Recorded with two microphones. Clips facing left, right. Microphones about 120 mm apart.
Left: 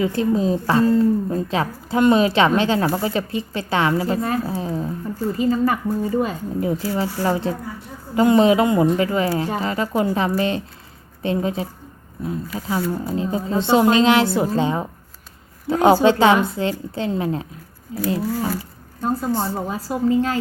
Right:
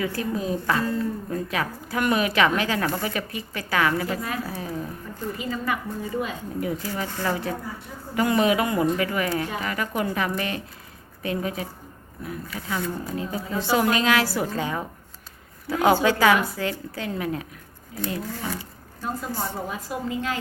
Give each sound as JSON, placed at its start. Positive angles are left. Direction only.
{"t": 0.0, "sound": "a woman's voice", "side_deg": 25}
{"t": 5.3, "sound": "a woman's voice", "side_deg": 35}
{"t": 18.2, "sound": "roaring cats", "side_deg": 5}
{"t": 19.0, "sound": "speech", "side_deg": 30}